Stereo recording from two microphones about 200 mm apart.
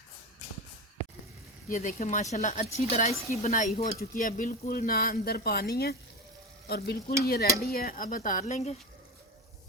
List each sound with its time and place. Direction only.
1.7 s speech: 40° left (ahead or behind)